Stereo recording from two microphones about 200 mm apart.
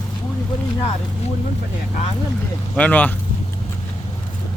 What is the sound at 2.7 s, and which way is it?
Speech, 10° left (ahead or behind).